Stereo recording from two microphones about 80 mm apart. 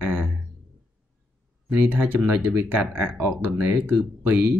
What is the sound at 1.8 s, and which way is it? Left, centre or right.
Speech, right.